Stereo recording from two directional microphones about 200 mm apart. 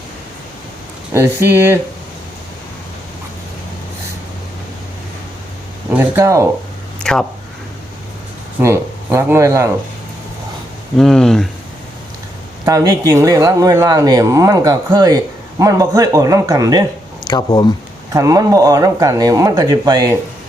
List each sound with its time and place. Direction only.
1.1 s speech: 10° right (ahead or behind)
5.9 s speech: 10° right (ahead or behind)
7.0 s speech: 5° left (ahead or behind)
8.6 s speech: 15° right (ahead or behind)
10.9 s speech: centre (ahead or behind)
12.6 s speech: 15° right (ahead or behind)
17.2 s speech: 20° left (ahead or behind)
18.1 s speech: 15° right (ahead or behind)